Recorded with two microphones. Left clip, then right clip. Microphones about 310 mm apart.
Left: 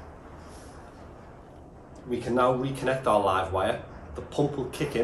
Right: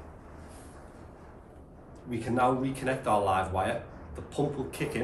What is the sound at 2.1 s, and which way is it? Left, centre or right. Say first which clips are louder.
Speech: left 3 dB; centre.